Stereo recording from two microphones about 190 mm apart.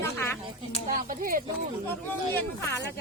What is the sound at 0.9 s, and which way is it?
Speech, 45° right (ahead or behind).